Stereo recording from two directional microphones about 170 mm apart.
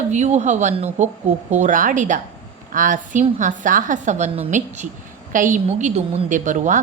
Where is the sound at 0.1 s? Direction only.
40° right (ahead or behind).